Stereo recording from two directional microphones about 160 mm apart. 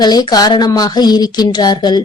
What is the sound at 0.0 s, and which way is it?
Speech, 25° left (ahead or behind).